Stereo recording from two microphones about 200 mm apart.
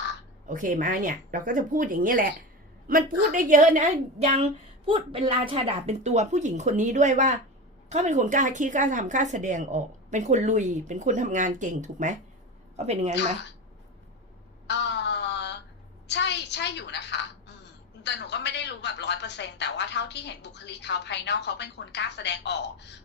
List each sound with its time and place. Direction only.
0.4 s a woman's voice: 40° right (ahead or behind)
14.7 s a sound: 60° left (ahead or behind)
18.0 s a woman's voice: 60° left (ahead or behind)